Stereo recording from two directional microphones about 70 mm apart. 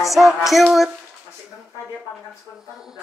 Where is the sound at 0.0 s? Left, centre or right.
Centre.